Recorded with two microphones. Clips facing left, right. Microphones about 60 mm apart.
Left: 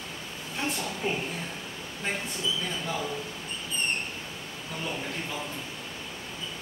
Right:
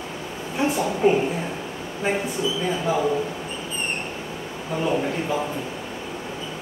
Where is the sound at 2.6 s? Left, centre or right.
Centre.